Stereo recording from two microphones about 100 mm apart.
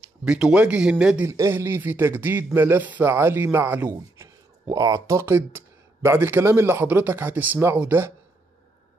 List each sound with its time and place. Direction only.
0.2 s speech: 10° right (ahead or behind)
1.2 s speech: 25° right (ahead or behind)
4.6 s speech: 35° right (ahead or behind); by 8.1 s 20° right (ahead or behind)